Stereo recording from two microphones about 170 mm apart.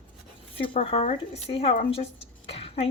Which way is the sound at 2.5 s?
35° left (ahead or behind).